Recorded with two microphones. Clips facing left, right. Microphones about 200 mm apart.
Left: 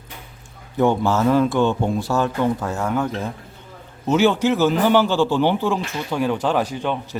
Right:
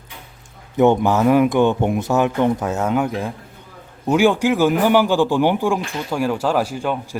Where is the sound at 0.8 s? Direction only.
20° right (ahead or behind).